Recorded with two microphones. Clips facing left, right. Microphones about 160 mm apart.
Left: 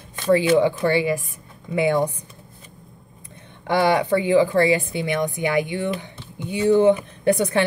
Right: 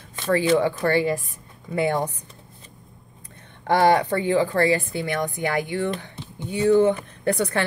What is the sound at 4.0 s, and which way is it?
A woman's voice, 15° left (ahead or behind).